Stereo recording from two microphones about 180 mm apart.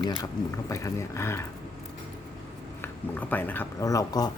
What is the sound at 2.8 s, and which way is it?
Speech, 10° left (ahead or behind).